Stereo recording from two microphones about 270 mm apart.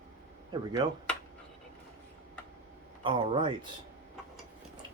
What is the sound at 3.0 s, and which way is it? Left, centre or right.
Speech, centre.